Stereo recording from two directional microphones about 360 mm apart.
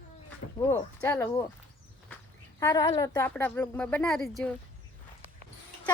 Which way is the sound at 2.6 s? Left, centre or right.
Centre.